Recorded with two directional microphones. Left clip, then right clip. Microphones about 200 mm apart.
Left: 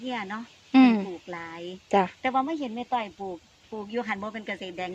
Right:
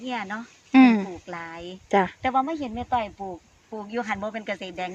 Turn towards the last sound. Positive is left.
turn(degrees=-15)  # may be behind; listen again after turning